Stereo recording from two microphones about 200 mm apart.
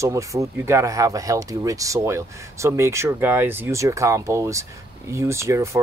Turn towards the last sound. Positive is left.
turn(degrees=-15)  # may be behind; listen again after turning